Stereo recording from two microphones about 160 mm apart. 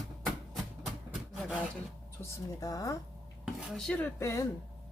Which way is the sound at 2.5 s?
20° left (ahead or behind).